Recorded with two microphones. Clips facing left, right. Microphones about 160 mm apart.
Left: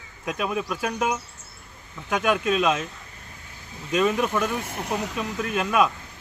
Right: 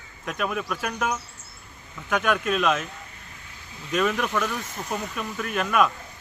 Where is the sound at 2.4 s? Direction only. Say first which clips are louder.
Left 1 dB; 30° left (ahead or behind).